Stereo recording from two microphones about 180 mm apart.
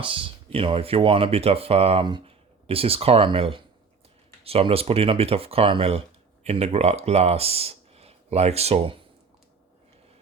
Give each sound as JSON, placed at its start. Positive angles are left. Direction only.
{"t": 0.0, "sound": "speech", "side_deg": -30}